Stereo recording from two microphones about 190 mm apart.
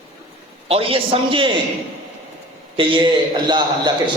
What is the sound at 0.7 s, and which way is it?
Speech, 30° right (ahead or behind).